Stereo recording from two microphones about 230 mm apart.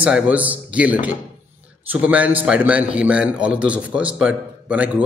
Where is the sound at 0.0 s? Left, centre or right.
Centre.